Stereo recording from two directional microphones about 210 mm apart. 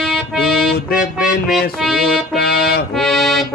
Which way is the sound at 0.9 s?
45° left (ahead or behind).